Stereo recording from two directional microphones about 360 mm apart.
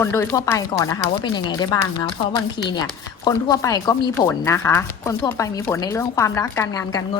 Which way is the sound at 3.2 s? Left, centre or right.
Centre.